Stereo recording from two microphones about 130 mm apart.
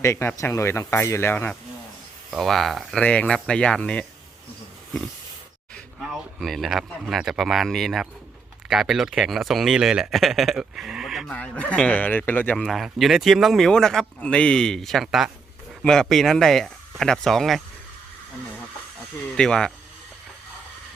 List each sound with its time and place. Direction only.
0.0 s speech: 20° left (ahead or behind)
2.3 s a man's voice: centre (ahead or behind)
6.0 s a man's voice: centre (ahead or behind)
11.3 s a man's voice: 10° left (ahead or behind)
12.6 s a man's voice: centre (ahead or behind)
19.4 s a man's voice: 5° left (ahead or behind)